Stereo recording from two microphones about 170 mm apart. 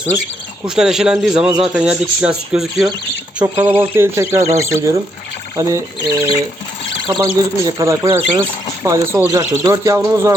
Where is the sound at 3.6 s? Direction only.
10° right (ahead or behind).